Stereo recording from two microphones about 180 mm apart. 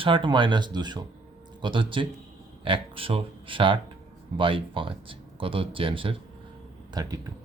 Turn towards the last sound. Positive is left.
turn(degrees=-20)  # may be behind; listen again after turning